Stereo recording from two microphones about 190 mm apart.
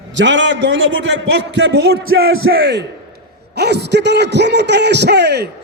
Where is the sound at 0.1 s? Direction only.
75° right (ahead or behind); by 2.5 s 90° right.